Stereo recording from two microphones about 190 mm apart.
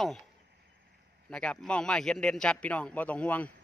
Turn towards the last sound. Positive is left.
turn(degrees=5)  # may be behind; listen again after turning